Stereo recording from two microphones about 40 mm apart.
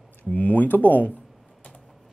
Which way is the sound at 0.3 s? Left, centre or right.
Left.